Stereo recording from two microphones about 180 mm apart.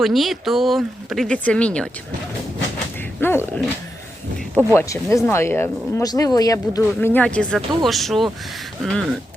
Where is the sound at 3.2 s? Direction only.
10° left (ahead or behind).